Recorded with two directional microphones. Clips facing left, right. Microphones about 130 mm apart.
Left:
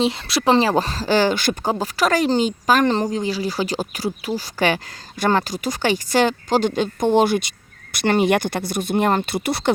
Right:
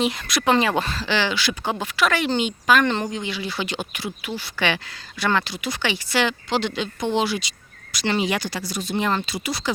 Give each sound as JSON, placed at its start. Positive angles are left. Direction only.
{"t": 0.0, "sound": "speech", "side_deg": 30}